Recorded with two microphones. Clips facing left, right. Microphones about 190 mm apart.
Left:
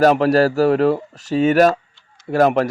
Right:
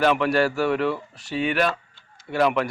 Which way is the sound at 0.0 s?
40° left (ahead or behind).